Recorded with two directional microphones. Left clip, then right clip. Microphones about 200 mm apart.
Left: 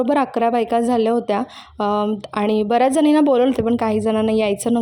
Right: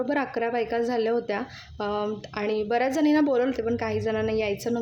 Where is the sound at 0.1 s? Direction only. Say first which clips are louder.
Left 9 dB; 35° left (ahead or behind).